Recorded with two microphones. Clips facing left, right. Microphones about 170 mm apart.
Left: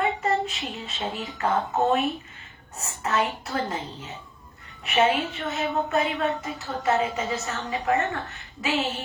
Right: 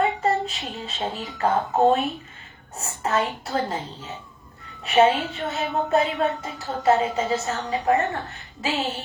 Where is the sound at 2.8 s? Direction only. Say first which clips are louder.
Right 2 dB; 30° right (ahead or behind).